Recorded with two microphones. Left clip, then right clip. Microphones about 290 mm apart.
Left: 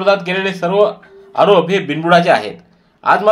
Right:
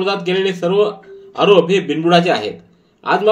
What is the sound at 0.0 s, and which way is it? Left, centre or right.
A man's voice, left.